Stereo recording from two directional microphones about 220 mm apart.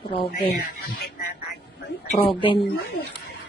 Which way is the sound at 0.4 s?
45° left (ahead or behind).